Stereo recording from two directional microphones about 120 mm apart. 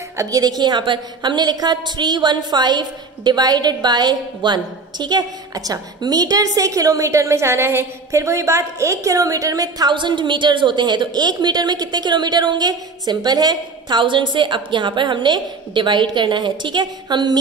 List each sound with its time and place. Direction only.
0.2 s a woman's voice: 30° right (ahead or behind)